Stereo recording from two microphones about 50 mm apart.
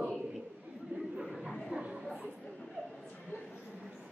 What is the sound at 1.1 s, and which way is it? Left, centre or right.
Chatter, centre.